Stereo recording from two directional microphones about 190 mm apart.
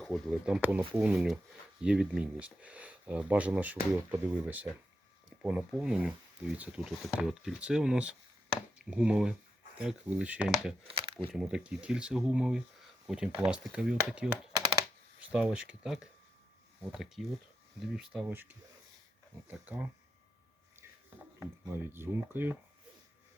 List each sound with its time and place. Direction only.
0.0 s speech: centre (ahead or behind)
8.4 s chopping: 5° right (ahead or behind)
9.7 s speech: 5° right (ahead or behind)
10.8 s speech: 25° right (ahead or behind)
11.3 s speech: 5° right (ahead or behind)
15.3 s speech: 5° right (ahead or behind)
21.3 s speech: 10° right (ahead or behind)